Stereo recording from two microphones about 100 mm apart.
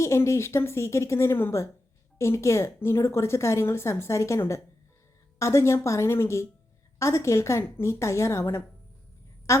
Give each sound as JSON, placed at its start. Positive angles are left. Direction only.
{"t": 0.0, "sound": "a woman's voice", "side_deg": 30}